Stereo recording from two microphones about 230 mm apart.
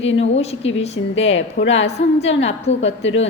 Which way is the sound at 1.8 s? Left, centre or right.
Left.